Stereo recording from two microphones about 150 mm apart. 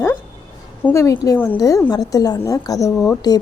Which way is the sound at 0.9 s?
20° left (ahead or behind).